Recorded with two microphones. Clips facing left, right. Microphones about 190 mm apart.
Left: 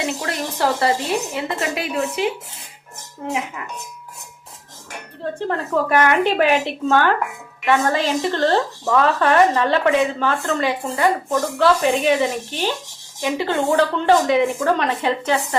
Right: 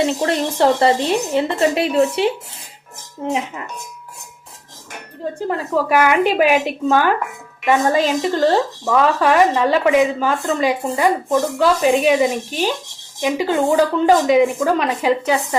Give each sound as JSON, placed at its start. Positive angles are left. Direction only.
{"t": 0.2, "sound": "speech", "side_deg": -30}
{"t": 5.5, "sound": "a woman's voice", "side_deg": -10}